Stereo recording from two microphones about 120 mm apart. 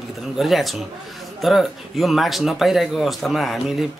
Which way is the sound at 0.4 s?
Centre (ahead or behind).